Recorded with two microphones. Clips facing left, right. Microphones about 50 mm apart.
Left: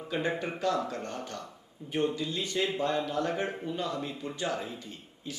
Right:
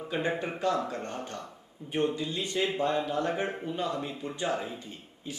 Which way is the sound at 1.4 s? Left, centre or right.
Centre.